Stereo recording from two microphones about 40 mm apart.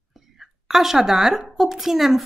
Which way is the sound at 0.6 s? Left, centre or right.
Centre.